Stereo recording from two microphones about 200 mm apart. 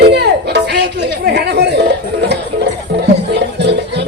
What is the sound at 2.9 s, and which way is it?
Music, 55° right (ahead or behind).